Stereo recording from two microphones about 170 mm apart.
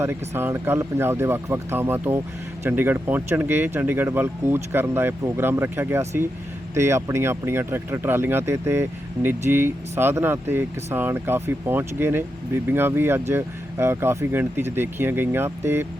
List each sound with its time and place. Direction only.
0.0 s speech: 15° right (ahead or behind)